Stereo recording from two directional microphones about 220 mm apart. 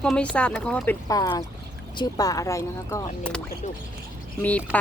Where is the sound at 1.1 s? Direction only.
15° left (ahead or behind).